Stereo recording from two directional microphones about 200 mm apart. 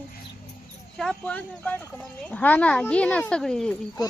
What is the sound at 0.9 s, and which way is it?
Speech, 5° left (ahead or behind).